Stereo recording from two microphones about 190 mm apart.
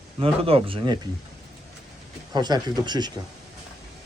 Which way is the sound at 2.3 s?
20° right (ahead or behind).